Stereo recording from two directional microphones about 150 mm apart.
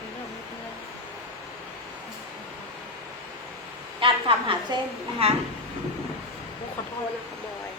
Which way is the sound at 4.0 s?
35° right (ahead or behind).